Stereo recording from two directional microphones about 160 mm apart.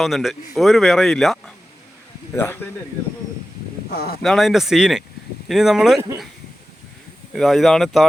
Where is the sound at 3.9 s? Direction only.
80° left.